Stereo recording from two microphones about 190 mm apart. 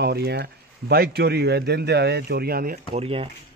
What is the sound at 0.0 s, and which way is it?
A man's voice, 60° right (ahead or behind).